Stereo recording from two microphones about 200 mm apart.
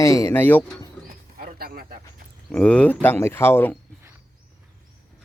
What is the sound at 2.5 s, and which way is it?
Speech, 5° left (ahead or behind).